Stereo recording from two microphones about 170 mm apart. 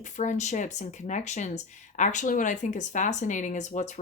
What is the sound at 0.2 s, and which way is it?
Speech, 45° left (ahead or behind).